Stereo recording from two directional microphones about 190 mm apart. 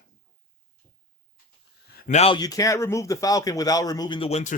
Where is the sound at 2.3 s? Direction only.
20° left (ahead or behind).